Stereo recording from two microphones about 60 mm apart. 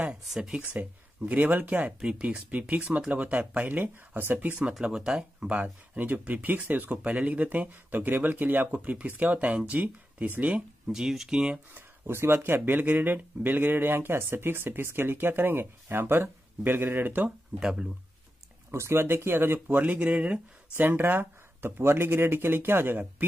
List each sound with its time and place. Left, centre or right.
0.3 s speech: centre
0.6 s speech: right
4.7 s speech: centre
5.5 s speech: right
10.9 s speech: centre
11.7 s speech: right
17.6 s speech: centre
18.7 s speech: right
19.8 s speech: right
20.7 s speech: right